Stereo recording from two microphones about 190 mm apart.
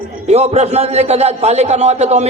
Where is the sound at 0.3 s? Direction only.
35° right (ahead or behind).